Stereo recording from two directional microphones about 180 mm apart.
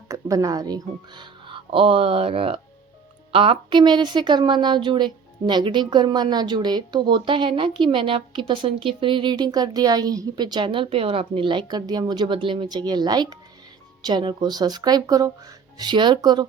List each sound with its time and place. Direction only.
0.1 s a woman's voice: 20° right (ahead or behind)